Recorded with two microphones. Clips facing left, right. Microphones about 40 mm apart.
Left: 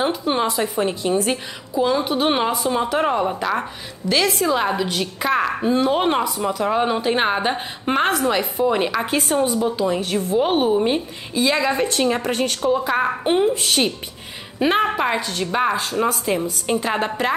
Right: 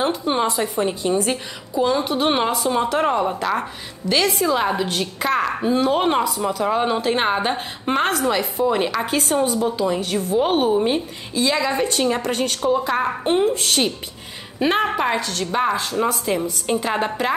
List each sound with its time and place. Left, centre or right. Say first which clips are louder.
0.0 s a woman's voice: even; centre
2.5 s a woman's voice: even; centre
15.1 s a woman's voice: even; centre
15.5 s a woman's voice: even; centre